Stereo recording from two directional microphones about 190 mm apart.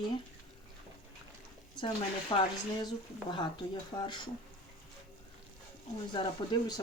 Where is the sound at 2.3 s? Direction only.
25° left (ahead or behind).